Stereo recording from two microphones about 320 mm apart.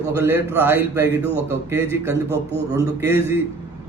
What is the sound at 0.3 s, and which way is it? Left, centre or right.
A man's voice, centre.